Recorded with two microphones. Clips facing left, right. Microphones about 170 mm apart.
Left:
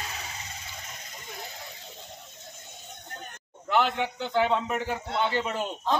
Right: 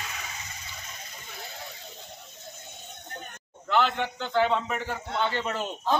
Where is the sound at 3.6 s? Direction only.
10° left (ahead or behind).